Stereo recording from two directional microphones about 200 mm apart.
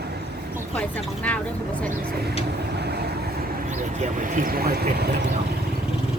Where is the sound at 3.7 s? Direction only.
35° right (ahead or behind).